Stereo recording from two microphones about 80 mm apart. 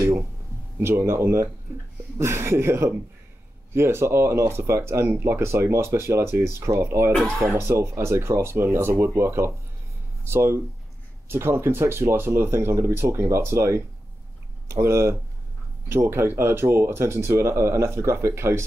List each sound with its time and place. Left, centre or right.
0.7 s speech: right